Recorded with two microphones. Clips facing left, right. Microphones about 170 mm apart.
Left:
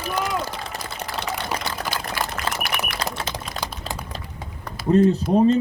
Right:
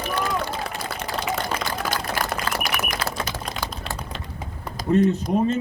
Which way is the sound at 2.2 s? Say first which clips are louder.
Right 1 dB; 45° right (ahead or behind).